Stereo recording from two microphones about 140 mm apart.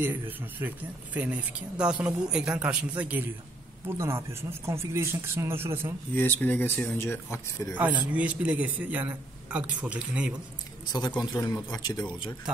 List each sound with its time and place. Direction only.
0.0 s speech: 15° right (ahead or behind)
6.1 s speech: 15° left (ahead or behind)
7.7 s speech: 10° right (ahead or behind)
10.9 s speech: 30° left (ahead or behind)